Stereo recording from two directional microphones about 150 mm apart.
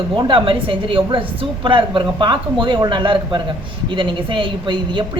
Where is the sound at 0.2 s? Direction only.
35° right (ahead or behind).